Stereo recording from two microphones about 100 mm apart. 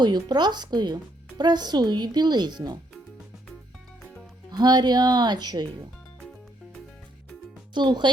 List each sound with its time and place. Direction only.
0.0 s speech: 45° right (ahead or behind)
4.4 s speech: 45° right (ahead or behind)
7.7 s speech: 50° right (ahead or behind)